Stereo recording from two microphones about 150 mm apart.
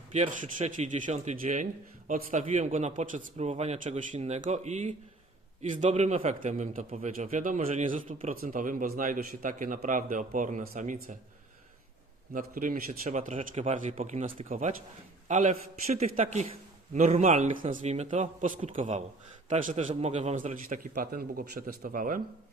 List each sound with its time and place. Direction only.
0.1 s a man's voice: 55° right (ahead or behind)
12.3 s a man's voice: 65° right (ahead or behind)
12.9 s a man's voice: 50° right (ahead or behind)
18.7 s a man's voice: 45° right (ahead or behind); by 22.2 s 65° right (ahead or behind)